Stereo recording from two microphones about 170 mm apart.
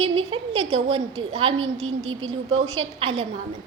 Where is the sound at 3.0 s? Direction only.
35° right (ahead or behind).